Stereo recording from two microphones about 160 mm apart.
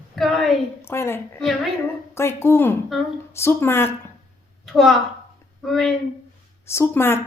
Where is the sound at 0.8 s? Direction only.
15° left (ahead or behind).